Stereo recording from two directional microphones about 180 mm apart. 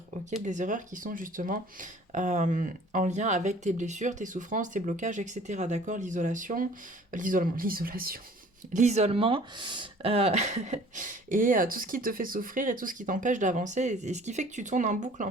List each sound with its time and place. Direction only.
0.4 s speech: 45° right (ahead or behind)
8.7 s speech: 40° right (ahead or behind)